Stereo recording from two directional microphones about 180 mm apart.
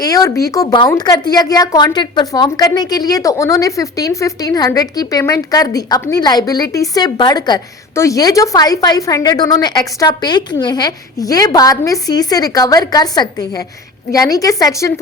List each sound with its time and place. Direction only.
0.0 s a woman's voice: 20° left (ahead or behind)